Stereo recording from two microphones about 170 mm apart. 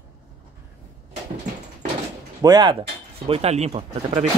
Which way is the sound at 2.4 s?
25° right (ahead or behind).